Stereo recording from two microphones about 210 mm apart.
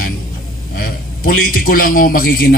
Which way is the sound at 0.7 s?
45° left (ahead or behind).